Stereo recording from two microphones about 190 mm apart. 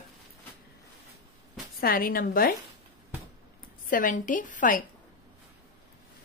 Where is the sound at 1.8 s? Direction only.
50° left (ahead or behind).